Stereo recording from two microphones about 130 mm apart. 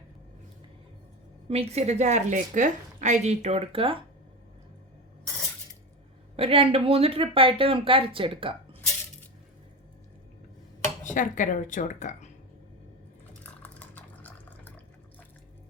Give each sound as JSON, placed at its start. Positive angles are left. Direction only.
{"t": 1.5, "sound": "a woman's voice", "side_deg": -55}
{"t": 6.3, "sound": "speech", "side_deg": -45}
{"t": 11.0, "sound": "a woman's voice", "side_deg": 80}
{"t": 13.4, "sound": "a sound", "side_deg": 10}